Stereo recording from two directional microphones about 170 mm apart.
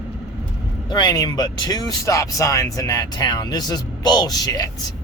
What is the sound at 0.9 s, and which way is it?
Speech, 25° left (ahead or behind).